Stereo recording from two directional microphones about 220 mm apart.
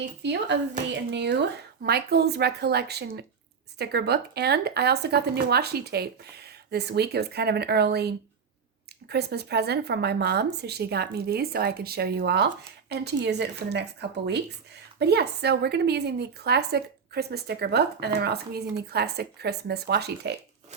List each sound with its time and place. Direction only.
0.2 s speech: 50° right (ahead or behind)